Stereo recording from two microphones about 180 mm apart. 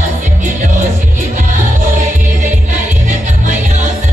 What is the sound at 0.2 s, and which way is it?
Music, 45° right (ahead or behind).